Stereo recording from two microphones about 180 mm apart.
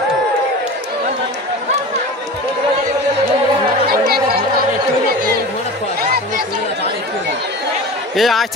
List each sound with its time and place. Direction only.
3.8 s chatter: 55° right (ahead or behind)
6.1 s chatter: 60° right (ahead or behind)
8.2 s speech: centre (ahead or behind)